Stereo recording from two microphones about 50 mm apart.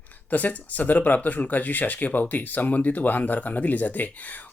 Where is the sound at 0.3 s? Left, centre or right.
Left.